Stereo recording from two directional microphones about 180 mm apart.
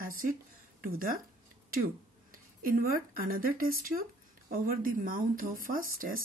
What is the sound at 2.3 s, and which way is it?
Speech, 50° right (ahead or behind).